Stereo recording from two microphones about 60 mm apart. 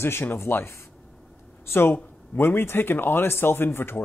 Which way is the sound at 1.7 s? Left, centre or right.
Left.